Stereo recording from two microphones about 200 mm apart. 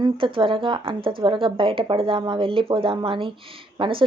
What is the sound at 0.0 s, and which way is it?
Speech, 25° right (ahead or behind).